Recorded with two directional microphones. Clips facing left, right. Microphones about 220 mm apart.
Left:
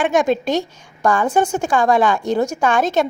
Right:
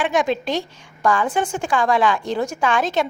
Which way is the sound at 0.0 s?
45° left (ahead or behind).